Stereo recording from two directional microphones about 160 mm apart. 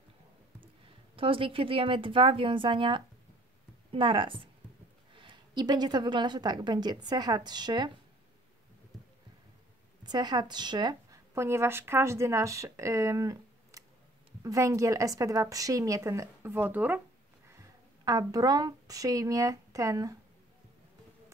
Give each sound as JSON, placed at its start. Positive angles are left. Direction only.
{"t": 0.8, "sound": "a woman's voice", "side_deg": -35}
{"t": 10.0, "sound": "a woman's voice", "side_deg": -25}
{"t": 18.0, "sound": "a woman's voice", "side_deg": -25}